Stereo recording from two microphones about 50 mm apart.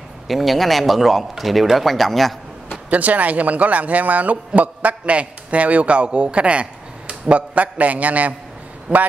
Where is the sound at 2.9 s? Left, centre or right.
Right.